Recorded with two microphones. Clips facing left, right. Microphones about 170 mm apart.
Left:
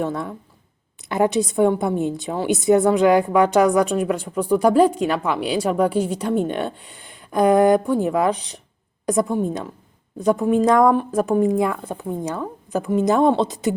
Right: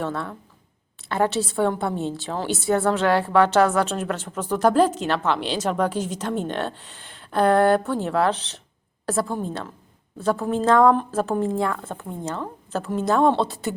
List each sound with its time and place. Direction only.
0.0 s a woman's voice: 15° left (ahead or behind)